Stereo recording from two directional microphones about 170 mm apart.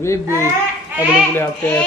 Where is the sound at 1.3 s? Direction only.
15° left (ahead or behind).